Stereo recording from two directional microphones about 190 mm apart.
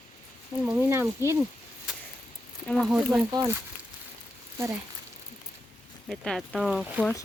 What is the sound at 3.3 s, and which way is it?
Speech, 20° right (ahead or behind).